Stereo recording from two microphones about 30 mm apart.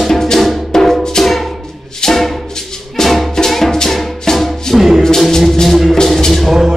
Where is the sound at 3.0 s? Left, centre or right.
Centre.